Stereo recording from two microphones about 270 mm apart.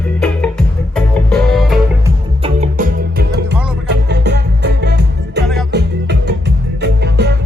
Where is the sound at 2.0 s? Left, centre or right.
Right.